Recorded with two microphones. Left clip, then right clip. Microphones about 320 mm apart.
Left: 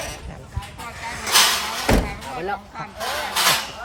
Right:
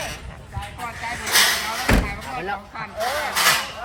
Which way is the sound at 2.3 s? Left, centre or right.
Left.